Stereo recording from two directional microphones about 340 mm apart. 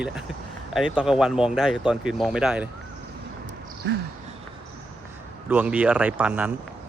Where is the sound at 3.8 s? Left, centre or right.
Right.